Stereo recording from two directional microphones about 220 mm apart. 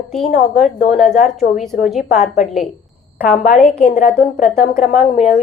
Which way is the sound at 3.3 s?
40° left (ahead or behind).